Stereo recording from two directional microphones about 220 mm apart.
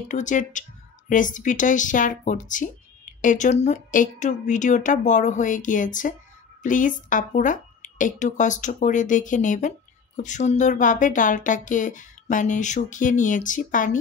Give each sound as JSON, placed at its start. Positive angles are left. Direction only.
{"t": 0.1, "sound": "a woman's voice", "side_deg": 35}